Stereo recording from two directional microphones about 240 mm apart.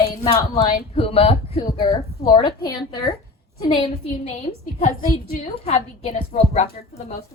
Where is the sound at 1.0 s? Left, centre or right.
Left.